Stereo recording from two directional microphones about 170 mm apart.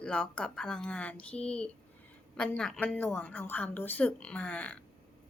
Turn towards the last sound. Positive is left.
turn(degrees=5)  # may be behind; listen again after turning